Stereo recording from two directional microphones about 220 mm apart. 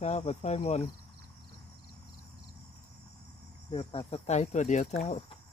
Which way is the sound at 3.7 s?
25° left (ahead or behind).